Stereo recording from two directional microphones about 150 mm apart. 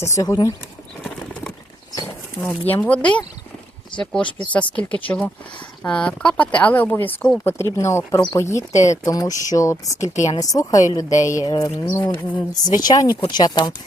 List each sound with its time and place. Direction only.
0.2 s speech: 25° left (ahead or behind)
1.0 s clip-clop: 5° left (ahead or behind)
2.4 s speech: 10° left (ahead or behind); by 13.7 s 30° left (ahead or behind)